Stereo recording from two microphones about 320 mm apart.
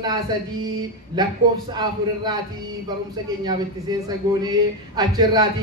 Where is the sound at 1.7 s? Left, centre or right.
Centre.